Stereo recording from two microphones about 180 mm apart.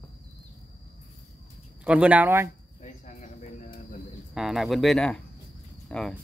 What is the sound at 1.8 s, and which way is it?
Speech, 5° right (ahead or behind).